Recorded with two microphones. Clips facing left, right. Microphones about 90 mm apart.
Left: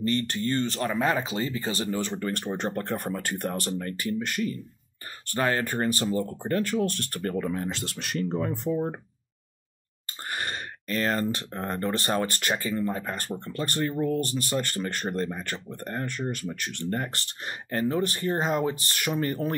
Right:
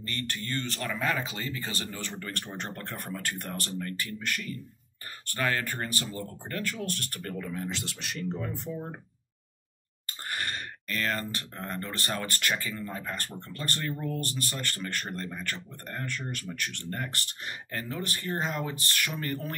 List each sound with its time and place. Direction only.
0.0 s speech: 30° left (ahead or behind); by 8.8 s 55° left (ahead or behind)
10.3 s speech: 25° left (ahead or behind)